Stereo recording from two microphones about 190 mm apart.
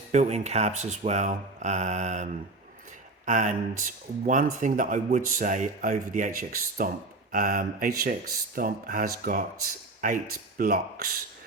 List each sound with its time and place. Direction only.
0.1 s speech: 35° right (ahead or behind)